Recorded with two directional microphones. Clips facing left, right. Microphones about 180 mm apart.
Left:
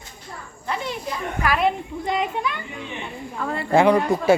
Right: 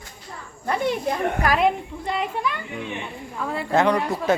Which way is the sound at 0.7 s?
55° right (ahead or behind).